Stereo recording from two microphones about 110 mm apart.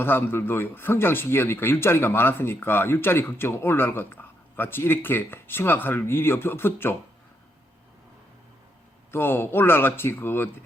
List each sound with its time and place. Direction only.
0.0 s speech: 20° left (ahead or behind)
9.1 s speech: 20° left (ahead or behind)